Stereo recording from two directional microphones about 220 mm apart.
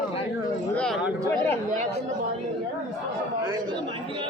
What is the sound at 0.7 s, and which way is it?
Speech, 5° left (ahead or behind).